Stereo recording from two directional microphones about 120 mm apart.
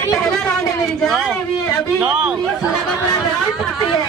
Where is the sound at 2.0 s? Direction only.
5° right (ahead or behind).